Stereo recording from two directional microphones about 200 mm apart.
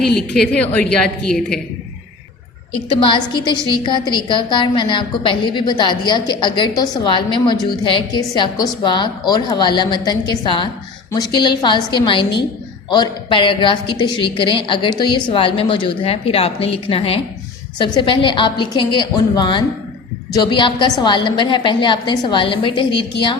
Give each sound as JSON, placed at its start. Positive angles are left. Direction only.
{"t": 0.3, "sound": "a woman's voice", "side_deg": 5}
{"t": 2.9, "sound": "a woman's voice", "side_deg": 25}